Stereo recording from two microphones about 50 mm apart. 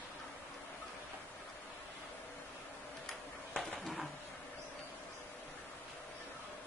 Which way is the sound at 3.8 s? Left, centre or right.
Centre.